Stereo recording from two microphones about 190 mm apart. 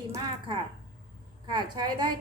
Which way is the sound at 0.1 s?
25° right (ahead or behind).